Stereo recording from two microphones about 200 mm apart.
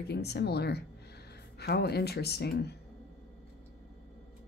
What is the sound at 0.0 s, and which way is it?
Speech, 55° left (ahead or behind).